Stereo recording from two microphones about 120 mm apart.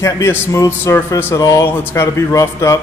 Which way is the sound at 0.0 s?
25° left (ahead or behind).